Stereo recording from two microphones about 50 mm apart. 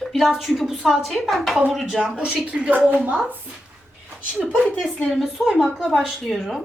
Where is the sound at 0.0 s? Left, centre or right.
Centre.